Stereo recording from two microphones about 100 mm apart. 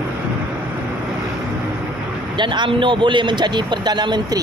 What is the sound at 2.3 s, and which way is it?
Speech, 50° right (ahead or behind).